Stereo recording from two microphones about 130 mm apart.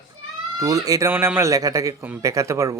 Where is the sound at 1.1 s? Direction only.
15° right (ahead or behind).